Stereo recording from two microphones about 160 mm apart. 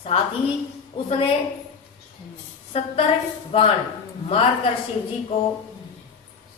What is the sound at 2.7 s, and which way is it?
Speech, 40° left (ahead or behind).